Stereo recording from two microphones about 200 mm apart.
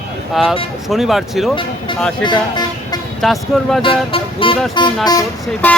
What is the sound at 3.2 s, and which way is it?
Speech, centre (ahead or behind).